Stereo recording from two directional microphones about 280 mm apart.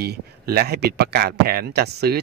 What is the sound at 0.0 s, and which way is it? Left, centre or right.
Speech, right.